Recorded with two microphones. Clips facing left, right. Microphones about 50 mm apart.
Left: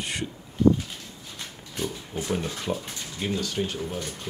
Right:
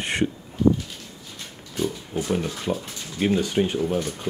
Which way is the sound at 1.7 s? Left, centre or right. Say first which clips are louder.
Right 5 dB; centre.